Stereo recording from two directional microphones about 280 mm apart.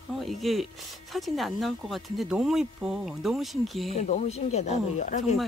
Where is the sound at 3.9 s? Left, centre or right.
Left.